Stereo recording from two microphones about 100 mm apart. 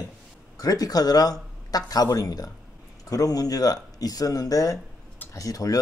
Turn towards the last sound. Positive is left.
turn(degrees=35)  # may be behind; listen again after turning